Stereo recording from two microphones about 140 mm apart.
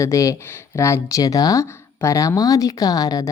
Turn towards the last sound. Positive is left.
turn(degrees=25)  # may be behind; listen again after turning